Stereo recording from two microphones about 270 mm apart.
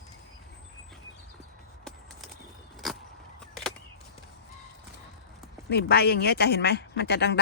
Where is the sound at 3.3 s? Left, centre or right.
Centre.